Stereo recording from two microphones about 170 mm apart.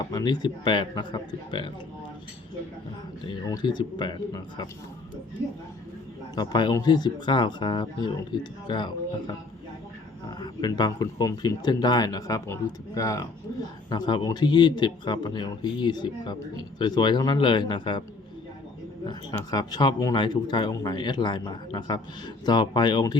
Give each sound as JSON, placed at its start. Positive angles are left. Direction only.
{"t": 0.0, "sound": "speech", "side_deg": 20}
{"t": 3.2, "sound": "speech", "side_deg": 25}
{"t": 6.3, "sound": "speech", "side_deg": 25}
{"t": 10.2, "sound": "speech", "side_deg": 20}
{"t": 19.5, "sound": "speech", "side_deg": 25}